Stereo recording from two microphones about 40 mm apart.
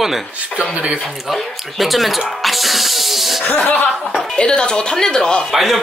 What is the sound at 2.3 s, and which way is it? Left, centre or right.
Music, centre.